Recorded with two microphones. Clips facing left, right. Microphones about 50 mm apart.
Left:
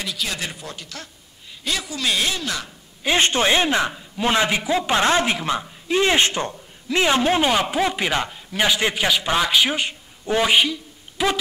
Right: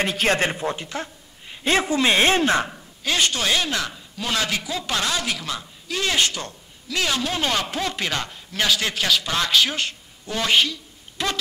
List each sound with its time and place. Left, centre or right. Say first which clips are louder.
0.0 s a woman's voice: right 7 dB; right
3.0 s a woman's voice: left 4 dB; left
7.4 s speech: left 5 dB; centre